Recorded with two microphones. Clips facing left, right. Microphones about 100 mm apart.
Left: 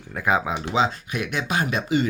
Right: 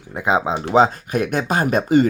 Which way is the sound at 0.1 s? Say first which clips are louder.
Right 3 dB; 20° right (ahead or behind).